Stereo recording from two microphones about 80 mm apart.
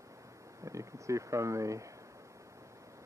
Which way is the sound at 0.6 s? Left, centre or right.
Right.